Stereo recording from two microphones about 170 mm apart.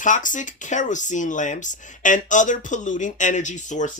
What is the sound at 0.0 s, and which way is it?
Speech, 50° left (ahead or behind).